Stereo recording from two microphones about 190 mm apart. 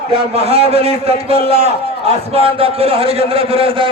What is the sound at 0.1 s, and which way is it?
A man's voice, 30° right (ahead or behind).